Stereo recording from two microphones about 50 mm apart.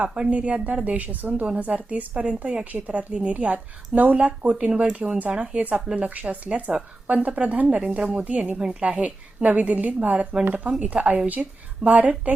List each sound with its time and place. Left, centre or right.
0.0 s a woman's voice: right
2.7 s a woman's voice: right